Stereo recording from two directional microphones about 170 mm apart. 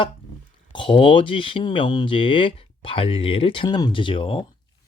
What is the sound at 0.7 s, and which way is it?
Speech, 30° left (ahead or behind).